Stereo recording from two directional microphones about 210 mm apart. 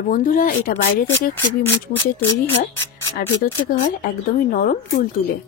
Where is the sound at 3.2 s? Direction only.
40° left (ahead or behind).